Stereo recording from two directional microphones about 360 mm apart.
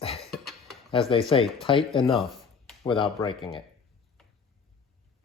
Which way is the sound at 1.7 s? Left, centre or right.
Centre.